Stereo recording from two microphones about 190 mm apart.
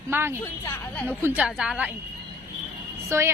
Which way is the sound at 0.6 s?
15° left (ahead or behind).